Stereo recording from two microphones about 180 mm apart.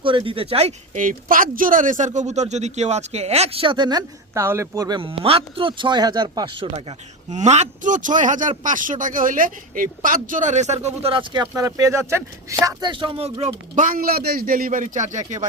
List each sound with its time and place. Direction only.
0.0 s speech: 30° right (ahead or behind)
13.7 s a man's voice: 50° right (ahead or behind)